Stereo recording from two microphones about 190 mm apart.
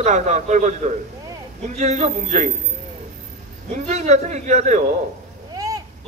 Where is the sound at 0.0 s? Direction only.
40° right (ahead or behind).